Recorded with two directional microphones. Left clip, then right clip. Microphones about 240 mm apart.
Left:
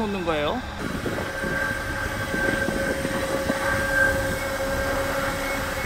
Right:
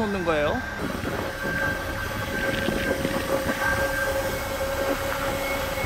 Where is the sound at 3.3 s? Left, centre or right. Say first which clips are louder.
Right 1 dB; right.